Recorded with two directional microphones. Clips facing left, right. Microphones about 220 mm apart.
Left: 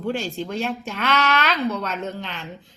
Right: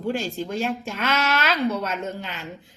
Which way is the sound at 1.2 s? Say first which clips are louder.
Right 1 dB; 5° right (ahead or behind).